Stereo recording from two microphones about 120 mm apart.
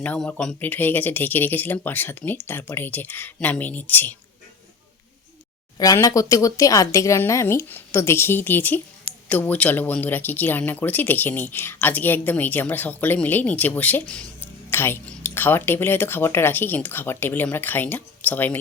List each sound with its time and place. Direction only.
0.2 s speech: 5° left (ahead or behind)
5.7 s speech: 30° left (ahead or behind); by 18.6 s 15° left (ahead or behind)